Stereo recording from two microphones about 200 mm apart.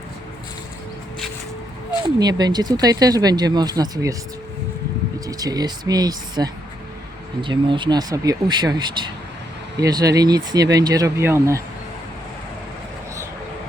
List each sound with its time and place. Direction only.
2.0 s speech: 20° right (ahead or behind)
5.2 s speech: 20° right (ahead or behind)